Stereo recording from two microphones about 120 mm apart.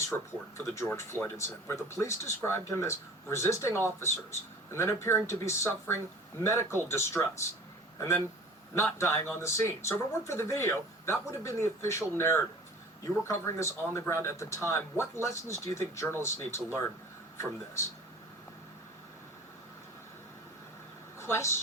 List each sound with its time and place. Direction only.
0.0 s speech: 25° left (ahead or behind)
21.2 s speech: 20° left (ahead or behind)